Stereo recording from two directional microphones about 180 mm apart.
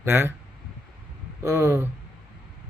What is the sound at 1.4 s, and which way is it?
Speech, 15° right (ahead or behind).